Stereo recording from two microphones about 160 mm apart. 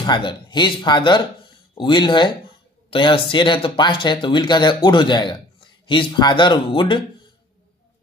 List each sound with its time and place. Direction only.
0.0 s speech: 30° left (ahead or behind)